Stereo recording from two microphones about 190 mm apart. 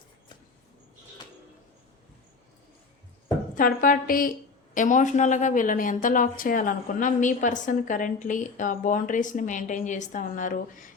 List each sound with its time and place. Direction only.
3.5 s a woman's voice: 45° left (ahead or behind)